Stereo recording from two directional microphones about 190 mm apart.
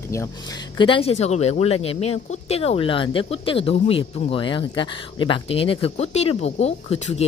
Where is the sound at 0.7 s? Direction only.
25° left (ahead or behind).